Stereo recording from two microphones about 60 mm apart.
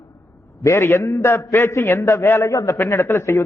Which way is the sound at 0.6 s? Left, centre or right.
Left.